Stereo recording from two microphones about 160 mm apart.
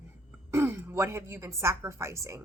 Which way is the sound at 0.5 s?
15° right (ahead or behind).